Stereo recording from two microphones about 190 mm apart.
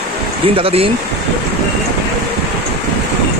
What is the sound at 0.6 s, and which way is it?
Speech, 30° right (ahead or behind).